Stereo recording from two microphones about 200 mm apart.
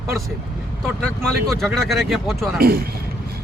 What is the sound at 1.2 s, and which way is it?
Speech, centre (ahead or behind).